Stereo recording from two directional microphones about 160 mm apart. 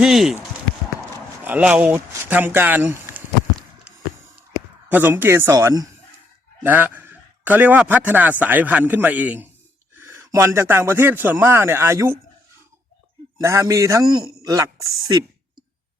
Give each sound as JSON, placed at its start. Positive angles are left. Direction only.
{"t": 0.0, "sound": "speech", "side_deg": 0}
{"t": 1.5, "sound": "a man's voice", "side_deg": -10}
{"t": 4.9, "sound": "a man's voice", "side_deg": -10}
{"t": 6.6, "sound": "a man's voice", "side_deg": -10}
{"t": 13.4, "sound": "a man's voice", "side_deg": -20}